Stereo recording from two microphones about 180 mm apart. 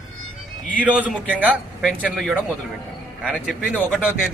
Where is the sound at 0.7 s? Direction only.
10° right (ahead or behind).